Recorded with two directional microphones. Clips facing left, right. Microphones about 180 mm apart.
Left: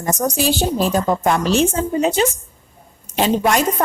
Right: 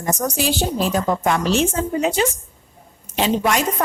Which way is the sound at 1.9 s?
25° left (ahead or behind).